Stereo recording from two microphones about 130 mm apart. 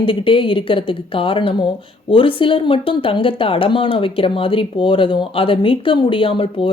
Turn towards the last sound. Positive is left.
turn(degrees=40)  # may be behind; listen again after turning